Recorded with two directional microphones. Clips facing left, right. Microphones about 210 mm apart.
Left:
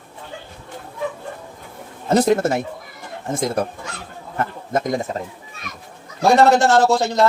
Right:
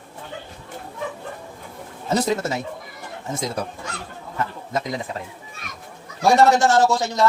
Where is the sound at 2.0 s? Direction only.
55° left (ahead or behind).